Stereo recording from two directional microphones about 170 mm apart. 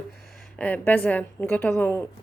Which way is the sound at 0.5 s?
10° left (ahead or behind).